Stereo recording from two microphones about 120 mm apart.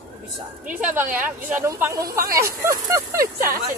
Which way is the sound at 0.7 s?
15° right (ahead or behind).